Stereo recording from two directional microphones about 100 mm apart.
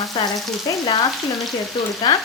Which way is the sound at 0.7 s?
45° left (ahead or behind).